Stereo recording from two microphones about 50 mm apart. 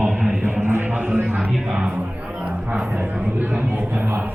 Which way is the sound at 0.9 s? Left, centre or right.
Right.